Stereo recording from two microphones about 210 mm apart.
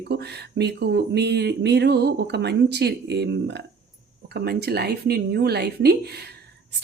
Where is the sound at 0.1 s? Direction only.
50° right (ahead or behind).